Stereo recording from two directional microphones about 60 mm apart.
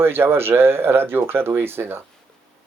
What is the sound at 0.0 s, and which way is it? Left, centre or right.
Speech, right.